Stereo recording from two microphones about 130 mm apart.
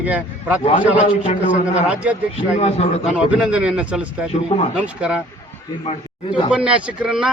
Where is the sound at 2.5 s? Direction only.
60° left (ahead or behind).